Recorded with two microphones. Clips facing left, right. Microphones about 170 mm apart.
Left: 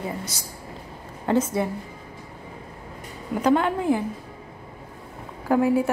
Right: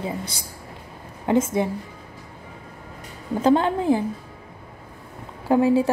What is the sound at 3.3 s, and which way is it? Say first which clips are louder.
Speech: right 2 dB; 25° right (ahead or behind).